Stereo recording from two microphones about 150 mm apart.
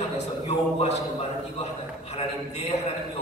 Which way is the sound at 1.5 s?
40° left (ahead or behind).